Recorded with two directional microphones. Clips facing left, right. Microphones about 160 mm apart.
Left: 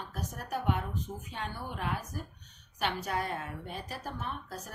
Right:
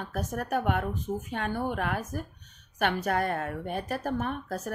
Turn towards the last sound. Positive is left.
turn(degrees=-55)  # may be behind; listen again after turning